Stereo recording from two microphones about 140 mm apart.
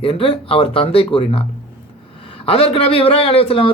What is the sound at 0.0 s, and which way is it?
A man's voice, 40° left (ahead or behind).